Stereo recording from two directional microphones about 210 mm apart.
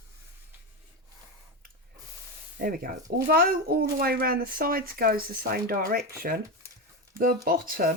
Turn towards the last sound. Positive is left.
turn(degrees=-40)  # may be behind; listen again after turning